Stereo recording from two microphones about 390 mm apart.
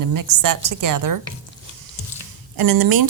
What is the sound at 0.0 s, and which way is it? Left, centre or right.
Speech, right.